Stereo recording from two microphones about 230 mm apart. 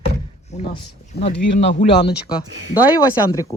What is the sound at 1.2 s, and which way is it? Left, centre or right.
Speech, left.